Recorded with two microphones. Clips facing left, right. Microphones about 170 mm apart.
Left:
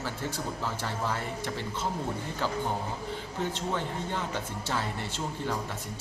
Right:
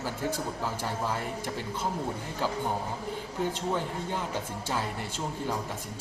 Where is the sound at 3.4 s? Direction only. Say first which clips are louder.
Right 2 dB; 10° right (ahead or behind).